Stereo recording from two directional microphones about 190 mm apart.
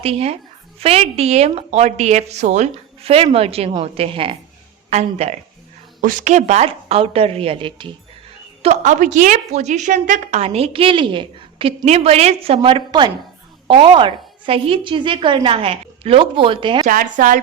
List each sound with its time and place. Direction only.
0.0 s a woman's voice: 30° right (ahead or behind)
8.6 s a woman's voice: 35° right (ahead or behind)
16.8 s a woman's voice: 45° right (ahead or behind)